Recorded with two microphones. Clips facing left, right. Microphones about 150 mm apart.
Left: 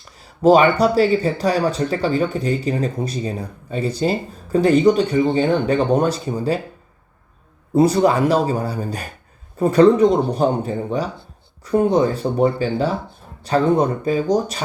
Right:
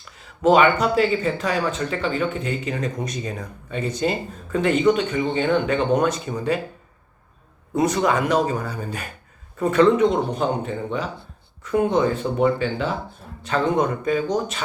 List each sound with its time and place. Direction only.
0.0 s speech: 35° left (ahead or behind)
7.8 s speech: 35° left (ahead or behind)